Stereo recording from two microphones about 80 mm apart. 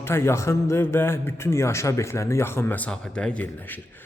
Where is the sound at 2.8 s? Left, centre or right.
Centre.